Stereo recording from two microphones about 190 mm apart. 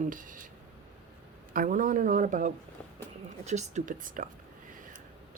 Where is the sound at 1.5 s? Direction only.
45° right (ahead or behind).